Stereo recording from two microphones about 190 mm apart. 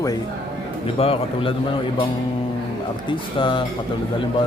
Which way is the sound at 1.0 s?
30° left (ahead or behind).